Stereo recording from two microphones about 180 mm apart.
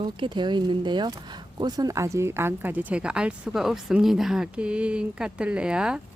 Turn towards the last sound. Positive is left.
turn(degrees=-5)  # may be behind; listen again after turning